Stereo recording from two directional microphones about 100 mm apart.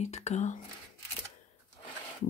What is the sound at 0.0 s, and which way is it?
Speech, 90° left.